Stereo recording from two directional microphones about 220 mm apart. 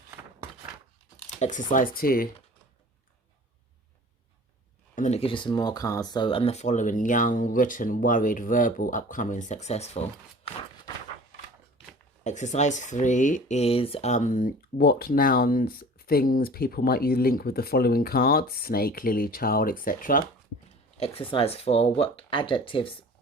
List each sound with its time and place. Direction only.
1.4 s speech: 35° left (ahead or behind)
4.9 s speech: 30° left (ahead or behind)
12.2 s speech: 35° left (ahead or behind)
21.0 s speech: 25° left (ahead or behind)